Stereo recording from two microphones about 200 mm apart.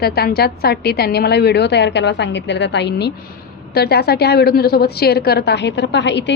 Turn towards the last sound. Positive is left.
turn(degrees=60)  # may be behind; listen again after turning